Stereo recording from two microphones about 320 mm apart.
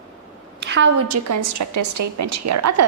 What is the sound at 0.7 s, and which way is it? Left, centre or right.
A woman's voice, right.